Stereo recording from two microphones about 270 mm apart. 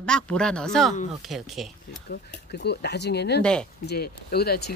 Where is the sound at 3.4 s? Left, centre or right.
Centre.